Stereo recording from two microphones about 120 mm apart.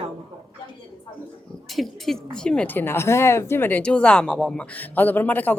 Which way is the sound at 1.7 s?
Centre (ahead or behind).